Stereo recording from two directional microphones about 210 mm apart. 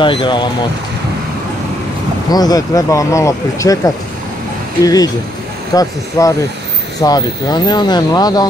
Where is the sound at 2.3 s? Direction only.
20° left (ahead or behind).